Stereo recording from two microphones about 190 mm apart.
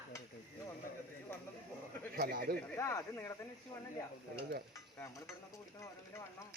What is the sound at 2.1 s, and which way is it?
Speech, 55° right (ahead or behind).